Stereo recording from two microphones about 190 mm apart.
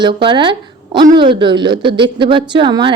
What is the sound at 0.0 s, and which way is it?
A woman's voice, 25° right (ahead or behind).